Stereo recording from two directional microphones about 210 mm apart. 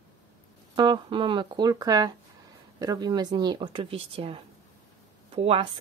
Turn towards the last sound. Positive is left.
turn(degrees=-25)  # may be behind; listen again after turning